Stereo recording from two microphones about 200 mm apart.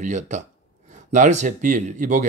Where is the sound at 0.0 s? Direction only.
35° right (ahead or behind).